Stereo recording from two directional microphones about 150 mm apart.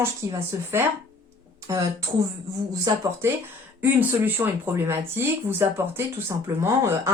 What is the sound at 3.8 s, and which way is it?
Speech, 10° right (ahead or behind).